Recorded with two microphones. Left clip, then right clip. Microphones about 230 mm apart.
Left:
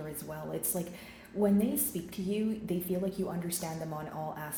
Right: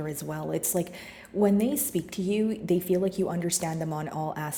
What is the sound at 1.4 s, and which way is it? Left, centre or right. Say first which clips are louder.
A woman's voice: right 5 dB; right.